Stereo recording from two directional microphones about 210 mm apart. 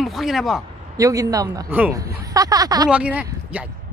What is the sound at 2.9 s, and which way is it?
Speech, 5° right (ahead or behind).